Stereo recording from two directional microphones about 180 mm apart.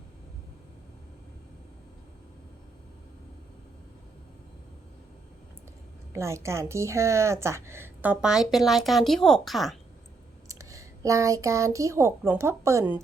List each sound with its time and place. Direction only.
6.1 s a woman's voice: 15° right (ahead or behind); by 9.7 s centre (ahead or behind)
10.5 s speech: 15° right (ahead or behind)